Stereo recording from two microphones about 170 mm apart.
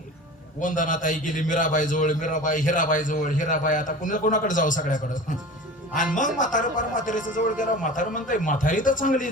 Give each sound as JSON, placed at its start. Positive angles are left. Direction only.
{"t": 0.6, "sound": "a man's voice", "side_deg": 50}